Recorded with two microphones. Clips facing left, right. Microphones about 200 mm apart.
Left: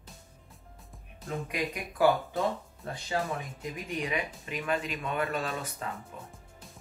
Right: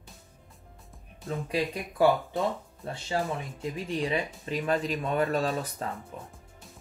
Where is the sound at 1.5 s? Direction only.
30° right (ahead or behind).